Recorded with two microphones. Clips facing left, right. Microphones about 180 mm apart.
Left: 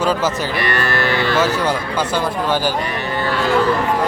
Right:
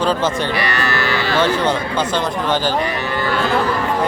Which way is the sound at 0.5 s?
50° left (ahead or behind).